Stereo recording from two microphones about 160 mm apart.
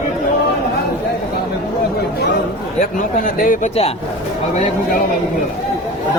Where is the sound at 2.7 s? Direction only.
55° left (ahead or behind).